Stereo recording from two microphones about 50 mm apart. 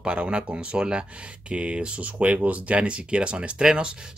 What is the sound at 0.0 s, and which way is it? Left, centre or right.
Speech, right.